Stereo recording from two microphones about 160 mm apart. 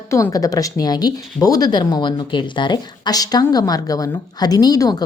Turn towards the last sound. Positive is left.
turn(degrees=25)  # may be behind; listen again after turning